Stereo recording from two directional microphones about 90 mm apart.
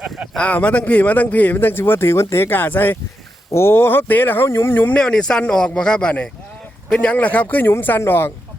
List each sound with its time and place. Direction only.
0.3 s a man's voice: 15° left (ahead or behind)
4.9 s a man's voice: 10° left (ahead or behind); by 8.3 s 25° left (ahead or behind)